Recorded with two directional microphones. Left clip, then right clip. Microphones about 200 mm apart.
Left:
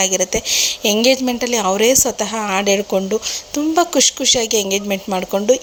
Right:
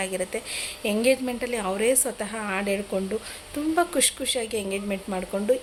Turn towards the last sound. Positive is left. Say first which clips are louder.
# left 9 dB
turn(degrees=35)  # may be behind; listen again after turning